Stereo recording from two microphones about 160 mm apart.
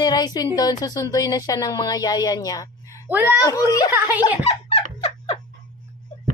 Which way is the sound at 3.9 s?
15° right (ahead or behind).